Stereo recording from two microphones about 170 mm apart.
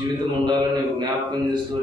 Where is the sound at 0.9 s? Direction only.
25° right (ahead or behind).